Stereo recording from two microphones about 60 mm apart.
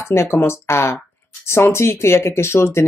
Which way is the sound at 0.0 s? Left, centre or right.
Left.